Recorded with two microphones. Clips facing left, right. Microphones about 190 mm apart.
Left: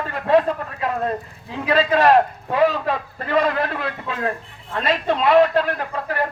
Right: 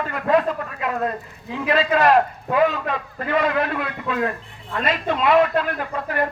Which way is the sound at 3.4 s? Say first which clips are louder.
Left 1 dB; 35° left (ahead or behind).